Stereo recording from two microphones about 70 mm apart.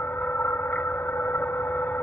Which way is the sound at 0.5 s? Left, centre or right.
Left.